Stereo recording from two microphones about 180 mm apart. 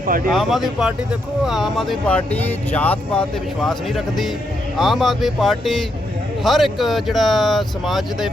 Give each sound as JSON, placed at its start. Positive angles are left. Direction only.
{"t": 0.3, "sound": "speech", "side_deg": 0}